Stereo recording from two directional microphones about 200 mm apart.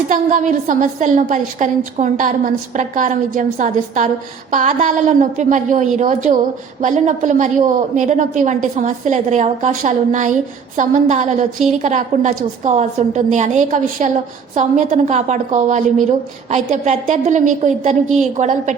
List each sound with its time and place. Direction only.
0.1 s a woman's voice: 40° right (ahead or behind)